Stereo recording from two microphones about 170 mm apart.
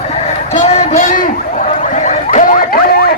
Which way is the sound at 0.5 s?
40° left (ahead or behind).